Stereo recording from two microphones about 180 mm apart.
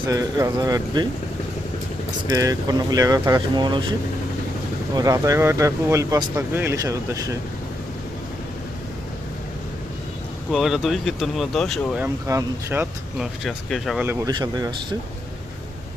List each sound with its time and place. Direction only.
0.1 s speech: 20° right (ahead or behind)
2.3 s speech: 20° right (ahead or behind)
4.9 s speech: 20° right (ahead or behind)
10.5 s speech: centre (ahead or behind)
12.0 s speech: 15° right (ahead or behind)
13.4 s speech: centre (ahead or behind)
14.1 s speech: 20° right (ahead or behind)